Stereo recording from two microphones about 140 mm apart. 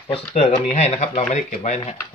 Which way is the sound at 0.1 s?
45° left (ahead or behind).